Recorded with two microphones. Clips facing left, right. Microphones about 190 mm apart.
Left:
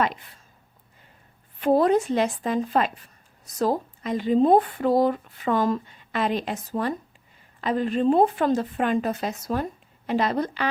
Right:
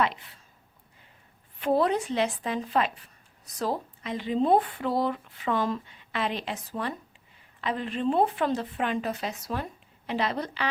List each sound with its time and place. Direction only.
1.6 s speech: 45° left (ahead or behind)